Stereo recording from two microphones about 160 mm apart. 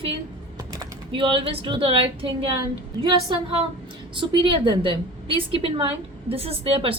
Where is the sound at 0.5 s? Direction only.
30° right (ahead or behind).